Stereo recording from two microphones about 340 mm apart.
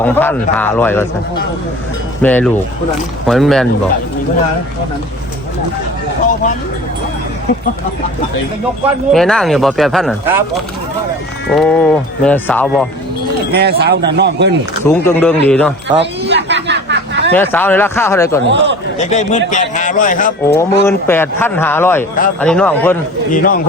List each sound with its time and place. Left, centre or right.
0.0 s speech: centre
2.2 s speech: centre
9.1 s speech: centre
13.5 s speech: right
14.8 s speech: centre
16.0 s a sound: right
17.3 s speech: centre
18.4 s speech: right
18.9 s a man's voice: left
20.5 s speech: centre
23.3 s a man's voice: left